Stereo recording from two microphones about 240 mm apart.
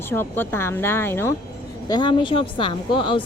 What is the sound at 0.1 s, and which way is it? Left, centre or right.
A woman's voice, centre.